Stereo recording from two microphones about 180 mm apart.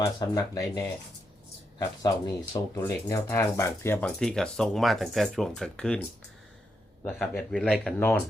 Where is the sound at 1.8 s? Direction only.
20° left (ahead or behind).